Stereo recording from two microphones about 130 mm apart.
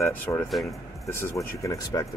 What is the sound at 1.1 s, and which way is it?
Speech, 20° left (ahead or behind).